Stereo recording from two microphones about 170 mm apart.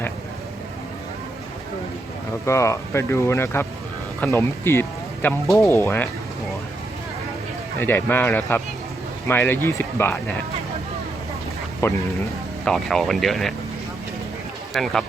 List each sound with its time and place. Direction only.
2.5 s speech: 15° left (ahead or behind)
7.8 s speech: 10° left (ahead or behind)
11.8 s speech: 15° left (ahead or behind)
12.6 s speech: centre (ahead or behind)
14.7 s speech: centre (ahead or behind)